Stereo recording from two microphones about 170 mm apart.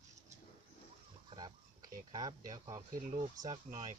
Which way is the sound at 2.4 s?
45° right (ahead or behind).